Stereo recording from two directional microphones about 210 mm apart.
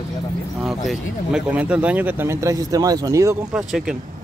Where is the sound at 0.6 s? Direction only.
Centre (ahead or behind).